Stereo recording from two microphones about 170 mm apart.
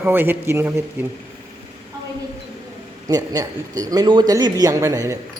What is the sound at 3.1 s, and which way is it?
Speech, 20° right (ahead or behind).